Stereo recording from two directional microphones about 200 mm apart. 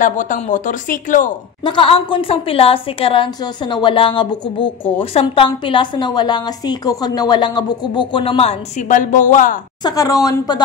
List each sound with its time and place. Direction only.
0.0 s speech: 40° left (ahead or behind)
1.6 s a woman's voice: 25° left (ahead or behind); by 9.6 s 40° left (ahead or behind)
9.8 s speech: 15° left (ahead or behind)